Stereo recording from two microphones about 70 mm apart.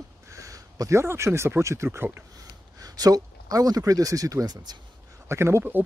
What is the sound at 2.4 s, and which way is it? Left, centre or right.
Speech, right.